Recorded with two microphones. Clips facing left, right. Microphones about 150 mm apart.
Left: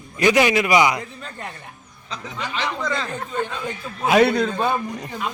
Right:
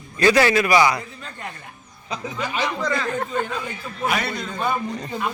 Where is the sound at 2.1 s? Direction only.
10° right (ahead or behind).